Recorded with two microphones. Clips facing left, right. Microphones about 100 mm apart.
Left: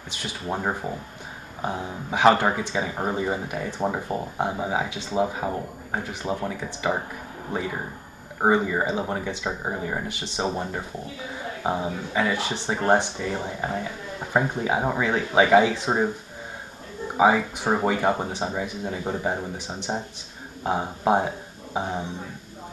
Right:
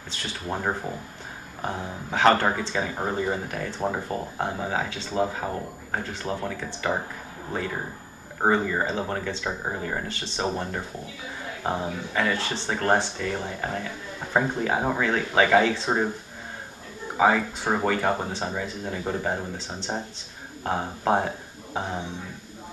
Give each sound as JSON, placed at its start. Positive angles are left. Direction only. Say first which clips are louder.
{"t": 0.1, "sound": "speech", "louder": "left 1 dB", "side_deg": 15}
{"t": 8.4, "sound": "speech", "louder": "left 2 dB", "side_deg": 10}
{"t": 17.2, "sound": "speech", "louder": "left 2 dB", "side_deg": 15}